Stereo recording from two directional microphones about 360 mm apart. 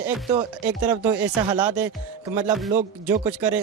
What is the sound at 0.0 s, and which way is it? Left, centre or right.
Speech, centre.